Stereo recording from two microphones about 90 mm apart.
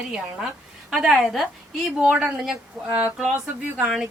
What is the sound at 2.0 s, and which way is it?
Speech, 15° right (ahead or behind).